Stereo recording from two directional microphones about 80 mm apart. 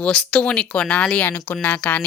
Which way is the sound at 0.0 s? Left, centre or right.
Centre.